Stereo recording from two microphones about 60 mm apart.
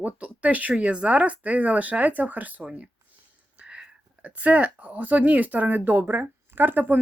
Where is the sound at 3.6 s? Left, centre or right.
Centre.